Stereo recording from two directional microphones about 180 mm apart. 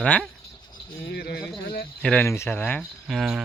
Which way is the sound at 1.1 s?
60° left (ahead or behind).